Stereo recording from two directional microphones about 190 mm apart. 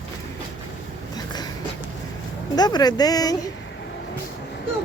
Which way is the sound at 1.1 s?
20° left (ahead or behind).